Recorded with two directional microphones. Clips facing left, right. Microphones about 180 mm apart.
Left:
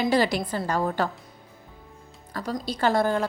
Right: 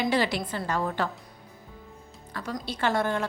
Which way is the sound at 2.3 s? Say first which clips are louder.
Left 4 dB; 35° left (ahead or behind).